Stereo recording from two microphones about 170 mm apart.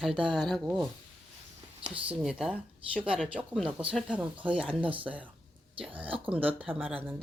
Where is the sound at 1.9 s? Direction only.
5° right (ahead or behind).